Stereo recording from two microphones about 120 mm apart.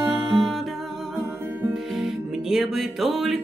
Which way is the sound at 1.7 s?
Centre (ahead or behind).